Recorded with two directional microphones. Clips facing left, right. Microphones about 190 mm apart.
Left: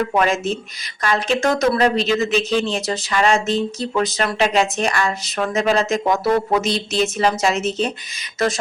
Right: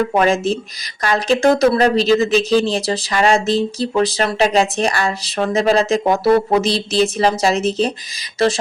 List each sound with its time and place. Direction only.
0.2 s speech: 35° right (ahead or behind)